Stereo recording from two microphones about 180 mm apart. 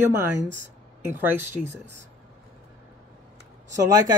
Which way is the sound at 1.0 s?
10° right (ahead or behind).